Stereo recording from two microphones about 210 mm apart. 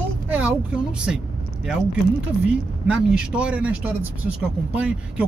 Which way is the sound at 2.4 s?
5° right (ahead or behind).